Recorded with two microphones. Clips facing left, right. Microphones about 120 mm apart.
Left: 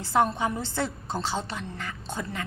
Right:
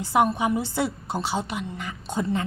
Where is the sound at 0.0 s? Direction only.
15° right (ahead or behind).